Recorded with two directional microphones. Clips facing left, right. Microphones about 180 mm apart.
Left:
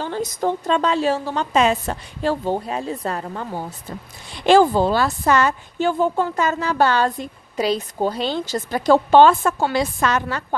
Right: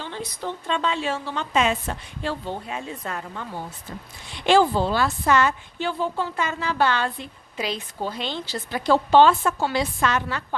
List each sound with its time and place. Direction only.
0.0 s a woman's voice: 45° left (ahead or behind)